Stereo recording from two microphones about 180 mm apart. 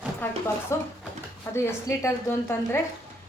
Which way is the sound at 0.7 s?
15° left (ahead or behind).